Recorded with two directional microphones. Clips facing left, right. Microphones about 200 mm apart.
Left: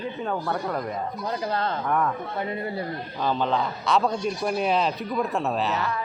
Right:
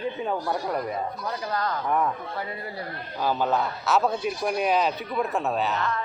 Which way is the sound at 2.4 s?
25° left (ahead or behind).